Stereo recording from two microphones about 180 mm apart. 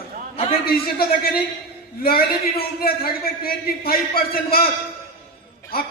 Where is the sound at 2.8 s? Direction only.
55° left (ahead or behind).